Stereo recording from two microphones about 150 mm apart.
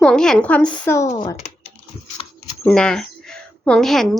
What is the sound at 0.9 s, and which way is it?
Speech, 20° left (ahead or behind).